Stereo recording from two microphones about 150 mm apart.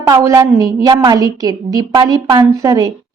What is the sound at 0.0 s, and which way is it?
A woman's voice, 25° right (ahead or behind).